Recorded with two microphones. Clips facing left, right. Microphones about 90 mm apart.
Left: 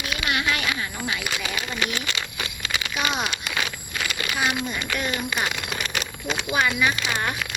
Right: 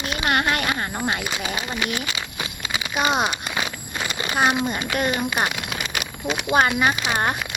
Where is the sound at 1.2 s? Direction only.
25° right (ahead or behind).